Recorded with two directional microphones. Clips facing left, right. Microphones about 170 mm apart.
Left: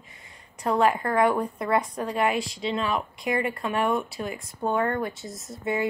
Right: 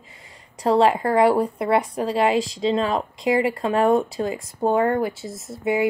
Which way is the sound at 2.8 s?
30° right (ahead or behind).